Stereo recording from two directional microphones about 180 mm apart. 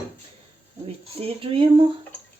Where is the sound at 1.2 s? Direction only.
30° right (ahead or behind).